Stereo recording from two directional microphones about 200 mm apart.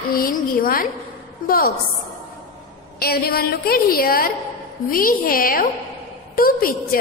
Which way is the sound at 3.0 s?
50° left (ahead or behind).